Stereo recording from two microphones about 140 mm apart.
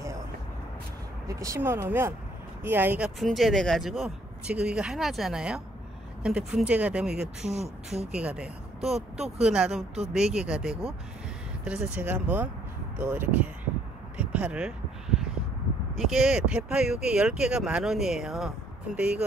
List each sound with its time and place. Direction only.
1.2 s speech: 20° right (ahead or behind)
3.2 s speech: centre (ahead or behind)
14.1 s a sound: 10° right (ahead or behind)
15.9 s speech: centre (ahead or behind)